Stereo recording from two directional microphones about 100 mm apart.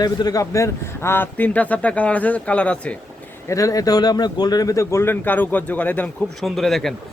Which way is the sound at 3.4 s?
35° left (ahead or behind).